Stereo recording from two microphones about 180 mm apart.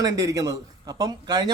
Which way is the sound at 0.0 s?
20° right (ahead or behind).